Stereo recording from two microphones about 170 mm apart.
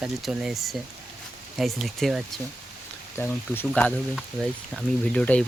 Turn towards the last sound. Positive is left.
turn(degrees=5)  # may be behind; listen again after turning